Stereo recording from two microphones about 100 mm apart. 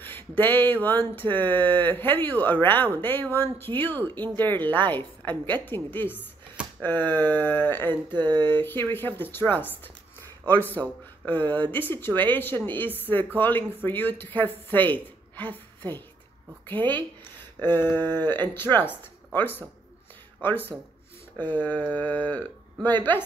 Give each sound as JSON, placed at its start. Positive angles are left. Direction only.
{"t": 0.4, "sound": "speech", "side_deg": 20}
{"t": 10.7, "sound": "a woman's voice", "side_deg": 20}
{"t": 21.4, "sound": "a sound", "side_deg": 15}
{"t": 22.8, "sound": "speech", "side_deg": 20}